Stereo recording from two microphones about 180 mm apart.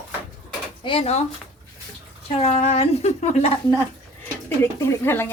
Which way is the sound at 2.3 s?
35° left (ahead or behind).